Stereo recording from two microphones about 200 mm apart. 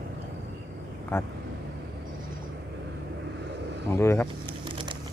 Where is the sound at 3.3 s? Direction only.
60° right (ahead or behind).